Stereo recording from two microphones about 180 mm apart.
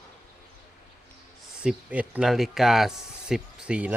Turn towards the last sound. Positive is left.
turn(degrees=-5)  # may be behind; listen again after turning